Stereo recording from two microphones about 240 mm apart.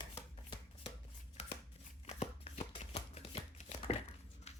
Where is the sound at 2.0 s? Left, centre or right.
Left.